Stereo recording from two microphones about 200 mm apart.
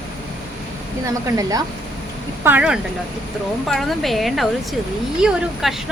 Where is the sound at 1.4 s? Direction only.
15° right (ahead or behind).